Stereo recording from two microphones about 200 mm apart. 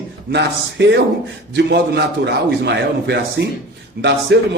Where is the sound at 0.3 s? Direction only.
60° right (ahead or behind).